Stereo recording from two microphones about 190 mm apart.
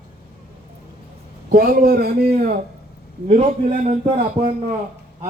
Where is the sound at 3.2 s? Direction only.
35° right (ahead or behind).